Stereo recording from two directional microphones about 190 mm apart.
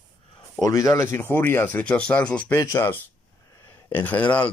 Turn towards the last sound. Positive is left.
turn(degrees=5)  # may be behind; listen again after turning